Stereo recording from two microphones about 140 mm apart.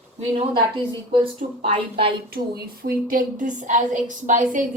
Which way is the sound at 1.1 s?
40° right (ahead or behind).